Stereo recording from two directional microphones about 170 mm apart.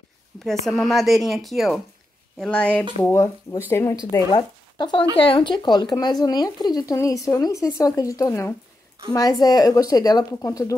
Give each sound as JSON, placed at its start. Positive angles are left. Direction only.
{"t": 0.4, "sound": "speech", "side_deg": 0}